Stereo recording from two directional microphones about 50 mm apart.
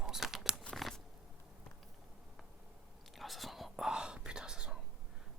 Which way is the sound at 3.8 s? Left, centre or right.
Centre.